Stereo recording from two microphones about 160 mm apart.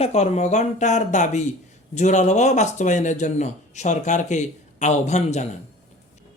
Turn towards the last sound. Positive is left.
turn(degrees=45)  # may be behind; listen again after turning